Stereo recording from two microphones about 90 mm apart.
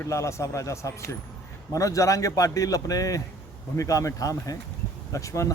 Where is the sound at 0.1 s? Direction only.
35° left (ahead or behind).